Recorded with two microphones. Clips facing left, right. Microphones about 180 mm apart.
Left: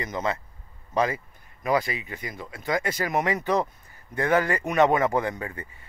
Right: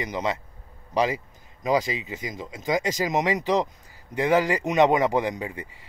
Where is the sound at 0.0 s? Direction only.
15° right (ahead or behind).